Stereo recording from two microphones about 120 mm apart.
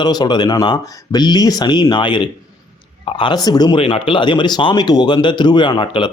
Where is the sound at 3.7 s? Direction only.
45° left (ahead or behind).